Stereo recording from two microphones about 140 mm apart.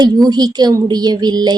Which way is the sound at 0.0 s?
30° right (ahead or behind).